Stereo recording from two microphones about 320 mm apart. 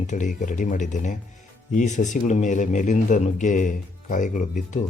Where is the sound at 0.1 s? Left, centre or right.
Left.